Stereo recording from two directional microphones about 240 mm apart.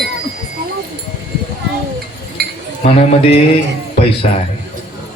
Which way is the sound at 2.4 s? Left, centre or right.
Right.